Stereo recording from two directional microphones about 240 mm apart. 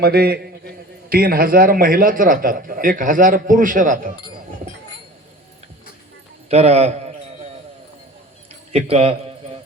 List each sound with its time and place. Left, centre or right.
0.0 s a man's voice: right
6.5 s a man's voice: right
8.7 s a man's voice: right